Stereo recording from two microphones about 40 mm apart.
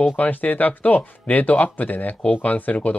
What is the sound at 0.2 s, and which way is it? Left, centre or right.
Speech, left.